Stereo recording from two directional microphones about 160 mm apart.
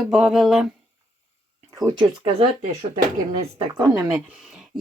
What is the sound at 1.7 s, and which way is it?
Speech, 25° right (ahead or behind).